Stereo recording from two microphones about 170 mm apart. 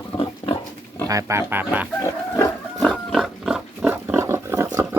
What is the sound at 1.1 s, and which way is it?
Speech, 20° right (ahead or behind).